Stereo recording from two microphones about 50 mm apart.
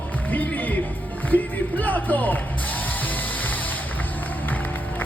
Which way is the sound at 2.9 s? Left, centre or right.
Left.